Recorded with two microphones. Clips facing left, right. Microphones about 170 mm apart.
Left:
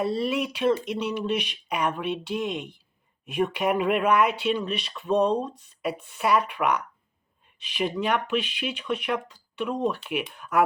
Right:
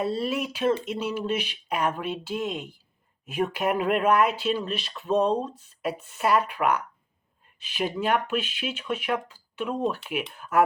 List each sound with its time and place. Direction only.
0.2 s speech: centre (ahead or behind)